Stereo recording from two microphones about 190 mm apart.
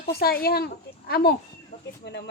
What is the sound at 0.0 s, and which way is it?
Speech, 55° left (ahead or behind).